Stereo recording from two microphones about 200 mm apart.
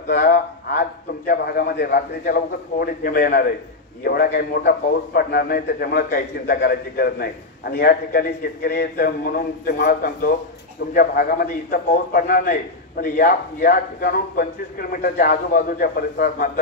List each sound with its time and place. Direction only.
0.1 s a man's voice: 50° left (ahead or behind)